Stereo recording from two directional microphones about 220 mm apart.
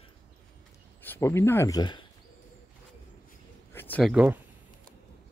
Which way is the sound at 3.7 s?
10° left (ahead or behind).